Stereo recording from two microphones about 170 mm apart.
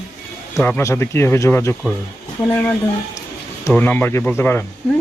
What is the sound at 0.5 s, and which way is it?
Speech, 15° left (ahead or behind).